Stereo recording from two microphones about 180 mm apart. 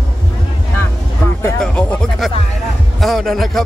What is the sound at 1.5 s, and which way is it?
Speech, 5° left (ahead or behind).